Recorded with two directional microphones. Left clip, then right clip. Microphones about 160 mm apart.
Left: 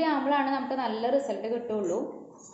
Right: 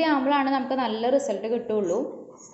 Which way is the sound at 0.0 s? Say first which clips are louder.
Right 4 dB; 40° right (ahead or behind).